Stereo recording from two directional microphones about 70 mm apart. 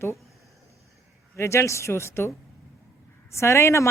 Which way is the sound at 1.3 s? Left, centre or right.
Left.